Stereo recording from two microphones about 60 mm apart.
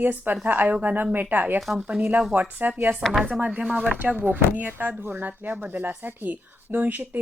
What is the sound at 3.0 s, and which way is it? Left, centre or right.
Speech, centre.